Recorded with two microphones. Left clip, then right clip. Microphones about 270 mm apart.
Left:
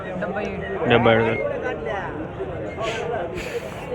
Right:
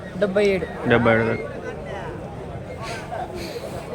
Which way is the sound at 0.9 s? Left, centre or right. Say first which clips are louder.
Left 1 dB; centre.